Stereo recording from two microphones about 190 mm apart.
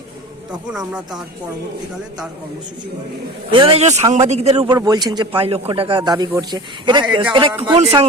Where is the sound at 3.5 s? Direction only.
25° right (ahead or behind).